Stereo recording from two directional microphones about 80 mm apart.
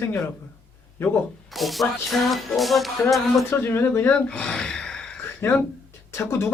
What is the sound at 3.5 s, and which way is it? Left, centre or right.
Speech, left.